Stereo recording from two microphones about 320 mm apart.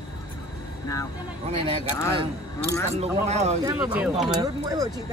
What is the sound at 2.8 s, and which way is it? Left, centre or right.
Speech, right.